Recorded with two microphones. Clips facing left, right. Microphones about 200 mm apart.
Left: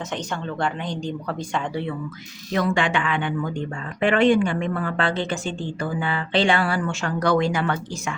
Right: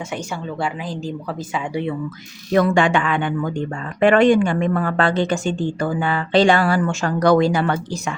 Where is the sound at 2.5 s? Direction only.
50° right (ahead or behind).